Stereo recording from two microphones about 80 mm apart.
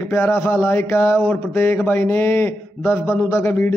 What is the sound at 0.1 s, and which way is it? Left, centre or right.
A man's voice, left.